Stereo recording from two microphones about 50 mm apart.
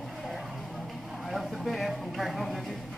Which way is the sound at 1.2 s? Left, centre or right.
Centre.